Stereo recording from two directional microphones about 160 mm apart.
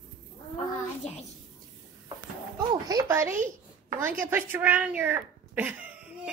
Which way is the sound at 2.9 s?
20° right (ahead or behind).